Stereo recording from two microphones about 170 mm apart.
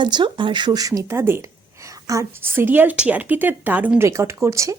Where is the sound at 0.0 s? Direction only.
25° right (ahead or behind).